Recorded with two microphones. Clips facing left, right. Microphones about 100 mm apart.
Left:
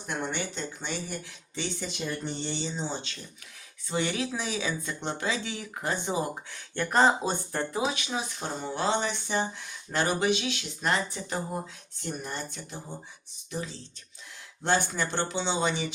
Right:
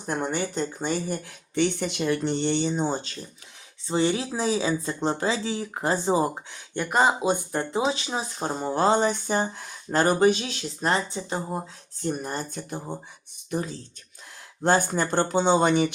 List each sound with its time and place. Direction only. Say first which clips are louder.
0.0 s speech: right 5 dB; 40° right (ahead or behind)
3.8 s speech: right 5 dB; 30° right (ahead or behind)
6.5 s speech: right 1 dB; 15° right (ahead or behind)
12.0 s speech: right 6 dB; 40° right (ahead or behind)